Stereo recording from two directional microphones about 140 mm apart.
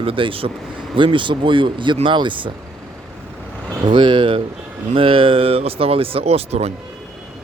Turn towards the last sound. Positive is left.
turn(degrees=-50)  # may be behind; listen again after turning